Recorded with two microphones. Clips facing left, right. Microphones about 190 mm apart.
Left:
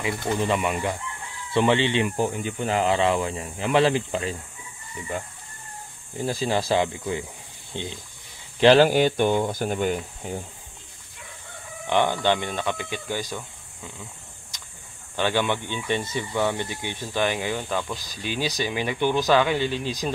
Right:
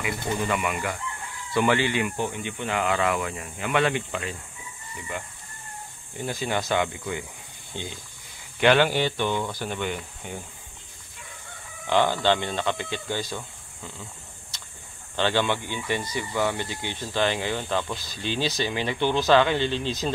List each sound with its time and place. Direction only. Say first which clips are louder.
0.0 s speech: left 3 dB; 30° left (ahead or behind)
2.0 s speech: left 4 dB; 40° left (ahead or behind)
6.2 s speech: left 3 dB; 35° left (ahead or behind)
8.5 s speech: left 4 dB; 35° left (ahead or behind)
11.9 s speech: even; 20° left (ahead or behind)
14.5 s a sound: even; 15° left (ahead or behind)
15.1 s speech: even; 15° left (ahead or behind)